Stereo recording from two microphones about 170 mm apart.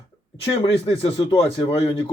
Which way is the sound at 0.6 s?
35° left (ahead or behind).